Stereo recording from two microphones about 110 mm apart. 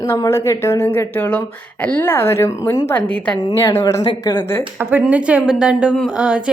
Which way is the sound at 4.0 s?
40° left (ahead or behind).